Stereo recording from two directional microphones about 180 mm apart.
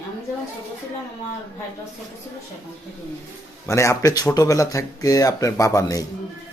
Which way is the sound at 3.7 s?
15° left (ahead or behind).